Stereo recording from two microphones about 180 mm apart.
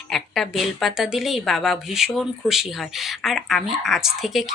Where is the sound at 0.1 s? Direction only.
Centre (ahead or behind).